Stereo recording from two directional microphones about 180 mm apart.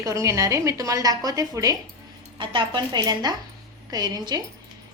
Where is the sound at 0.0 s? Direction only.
15° right (ahead or behind).